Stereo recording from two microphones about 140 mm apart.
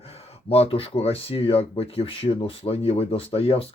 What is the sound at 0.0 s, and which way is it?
Speech, 45° left (ahead or behind).